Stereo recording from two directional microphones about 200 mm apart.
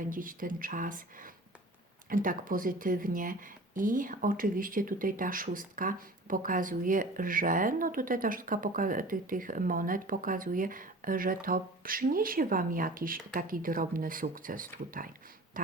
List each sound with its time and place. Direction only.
0.1 s speech: 45° right (ahead or behind)